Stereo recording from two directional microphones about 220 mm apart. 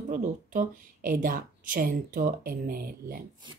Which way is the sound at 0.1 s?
35° right (ahead or behind).